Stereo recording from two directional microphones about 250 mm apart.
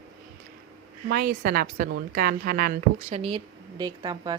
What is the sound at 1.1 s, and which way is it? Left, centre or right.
A woman's voice, right.